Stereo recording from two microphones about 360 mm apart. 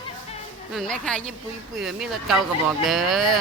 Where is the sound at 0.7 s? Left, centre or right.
Centre.